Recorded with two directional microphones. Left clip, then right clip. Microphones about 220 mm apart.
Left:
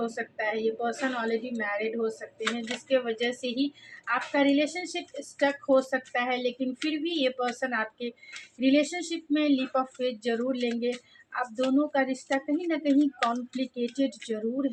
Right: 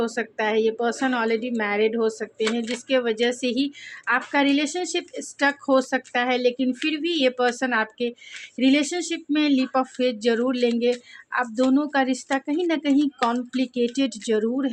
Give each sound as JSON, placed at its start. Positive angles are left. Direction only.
{"t": 0.0, "sound": "speech", "side_deg": -50}
{"t": 2.4, "sound": "speech", "side_deg": -25}
{"t": 2.9, "sound": "speech", "side_deg": -50}